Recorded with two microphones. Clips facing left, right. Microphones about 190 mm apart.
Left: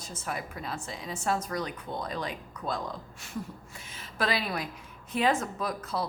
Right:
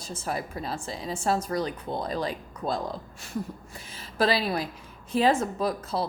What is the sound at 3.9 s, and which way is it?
A woman's voice, 30° right (ahead or behind).